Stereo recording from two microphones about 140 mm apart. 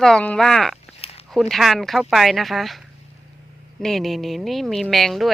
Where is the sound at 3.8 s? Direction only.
Centre (ahead or behind).